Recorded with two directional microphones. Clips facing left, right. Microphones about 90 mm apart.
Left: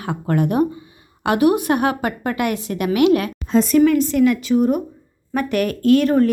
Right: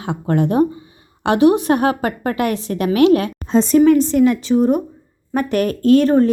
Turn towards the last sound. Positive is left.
turn(degrees=-35)  # may be behind; listen again after turning